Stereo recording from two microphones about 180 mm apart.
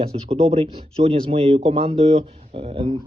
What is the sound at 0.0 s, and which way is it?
A man's voice, 35° right (ahead or behind).